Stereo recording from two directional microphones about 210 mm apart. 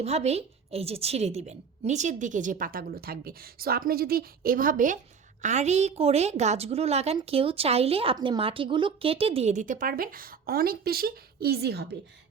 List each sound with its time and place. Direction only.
0.0 s a woman's voice: 30° right (ahead or behind); by 11.9 s 50° right (ahead or behind)